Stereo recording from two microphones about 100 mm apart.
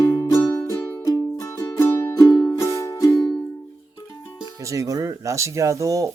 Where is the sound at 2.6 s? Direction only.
25° left (ahead or behind).